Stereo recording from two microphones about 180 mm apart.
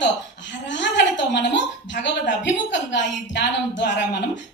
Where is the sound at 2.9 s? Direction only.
80° left.